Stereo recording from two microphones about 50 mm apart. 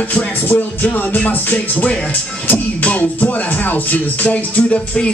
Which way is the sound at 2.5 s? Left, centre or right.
Left.